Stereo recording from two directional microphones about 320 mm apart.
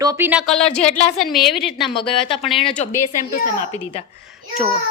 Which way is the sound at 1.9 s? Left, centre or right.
Centre.